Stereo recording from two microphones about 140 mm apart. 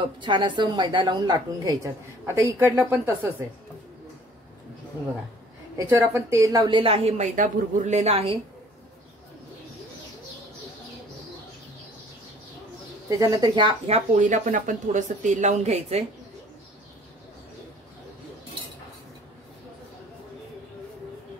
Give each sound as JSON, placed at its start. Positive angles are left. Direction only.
{"t": 0.0, "sound": "a woman's voice", "side_deg": -35}
{"t": 5.8, "sound": "a woman's voice", "side_deg": -20}
{"t": 7.3, "sound": "speech", "side_deg": -60}
{"t": 13.1, "sound": "a woman's voice", "side_deg": -25}
{"t": 13.6, "sound": "speech", "side_deg": -40}